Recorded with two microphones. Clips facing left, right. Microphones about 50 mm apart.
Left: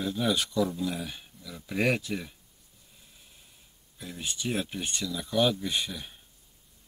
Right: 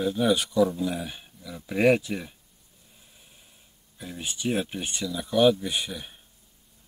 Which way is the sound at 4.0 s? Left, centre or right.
Centre.